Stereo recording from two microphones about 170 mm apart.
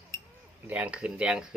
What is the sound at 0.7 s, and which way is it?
Speech, 10° right (ahead or behind).